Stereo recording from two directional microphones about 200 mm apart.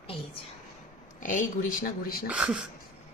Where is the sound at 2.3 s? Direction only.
5° right (ahead or behind).